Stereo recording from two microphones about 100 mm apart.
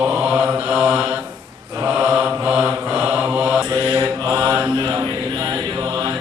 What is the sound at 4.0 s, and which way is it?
Mantra, 35° right (ahead or behind).